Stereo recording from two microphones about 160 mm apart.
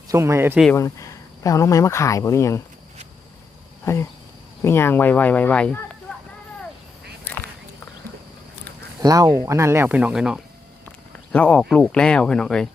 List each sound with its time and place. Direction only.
0.1 s speech: 15° right (ahead or behind)
0.8 s speech: 20° left (ahead or behind)
3.8 s speech: 15° left (ahead or behind)
9.0 s speech: 20° right (ahead or behind); by 10.4 s 5° right (ahead or behind)
11.3 s speech: 5° left (ahead or behind)